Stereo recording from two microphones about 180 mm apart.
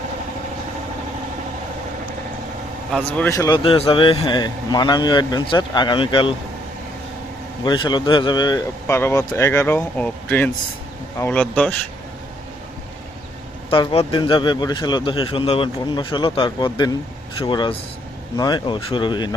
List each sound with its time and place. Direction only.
2.9 s speech: 10° left (ahead or behind)
3.6 s speech: 30° left (ahead or behind)
7.6 s speech: 25° left (ahead or behind); by 11.8 s 5° left (ahead or behind)
13.7 s speech: 30° left (ahead or behind)